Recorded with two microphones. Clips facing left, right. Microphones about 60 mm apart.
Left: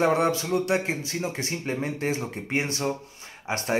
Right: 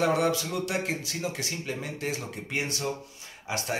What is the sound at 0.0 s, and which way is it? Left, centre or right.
A man's voice, left.